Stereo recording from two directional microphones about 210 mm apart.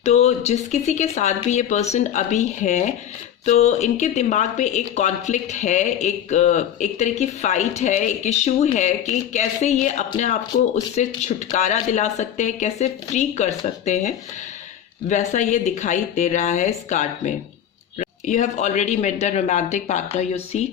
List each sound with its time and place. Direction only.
0.0 s speech: 30° left (ahead or behind)
15.1 s speech: 35° left (ahead or behind)